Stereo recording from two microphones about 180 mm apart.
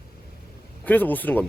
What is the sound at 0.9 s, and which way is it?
Speech, 10° left (ahead or behind).